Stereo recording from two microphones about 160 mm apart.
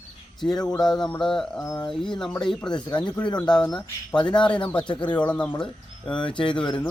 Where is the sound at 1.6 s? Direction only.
20° left (ahead or behind).